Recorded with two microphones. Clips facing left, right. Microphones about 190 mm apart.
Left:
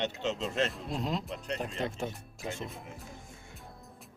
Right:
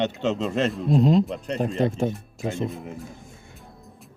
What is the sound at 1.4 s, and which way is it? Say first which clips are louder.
Speech: right 11 dB; 45° right (ahead or behind).